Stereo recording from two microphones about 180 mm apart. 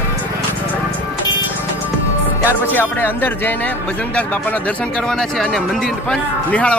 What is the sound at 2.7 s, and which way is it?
Speech, 10° left (ahead or behind).